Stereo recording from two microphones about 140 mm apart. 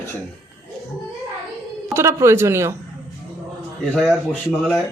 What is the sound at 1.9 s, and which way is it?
Speech, 20° right (ahead or behind).